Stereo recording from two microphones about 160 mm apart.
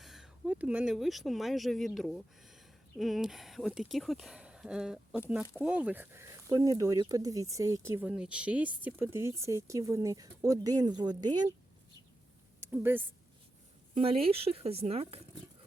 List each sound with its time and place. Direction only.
0.0 s speech: centre (ahead or behind); by 11.5 s 25° right (ahead or behind)
12.5 s a sound: 15° right (ahead or behind)
13.9 s speech: 35° right (ahead or behind)